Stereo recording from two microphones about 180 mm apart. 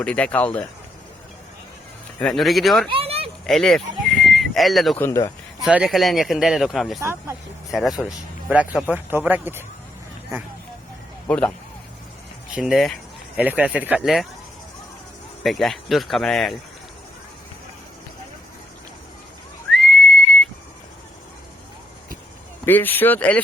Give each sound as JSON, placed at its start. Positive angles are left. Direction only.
{"t": 0.0, "sound": "speech", "side_deg": 5}
{"t": 2.1, "sound": "speech", "side_deg": 0}
{"t": 2.9, "sound": "speech", "side_deg": -30}
{"t": 3.4, "sound": "a sound", "side_deg": 5}
{"t": 4.9, "sound": "speech", "side_deg": 15}
{"t": 5.6, "sound": "speech", "side_deg": -5}
{"t": 7.0, "sound": "speech", "side_deg": -15}
{"t": 7.7, "sound": "speech", "side_deg": 0}
{"t": 11.3, "sound": "speech", "side_deg": 5}
{"t": 12.5, "sound": "speech", "side_deg": -5}
{"t": 15.4, "sound": "speech", "side_deg": 0}
{"t": 19.7, "sound": "neigh", "side_deg": 0}
{"t": 22.6, "sound": "speech", "side_deg": 10}